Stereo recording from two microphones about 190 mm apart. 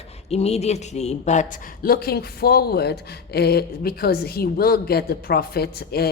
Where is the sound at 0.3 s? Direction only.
35° left (ahead or behind).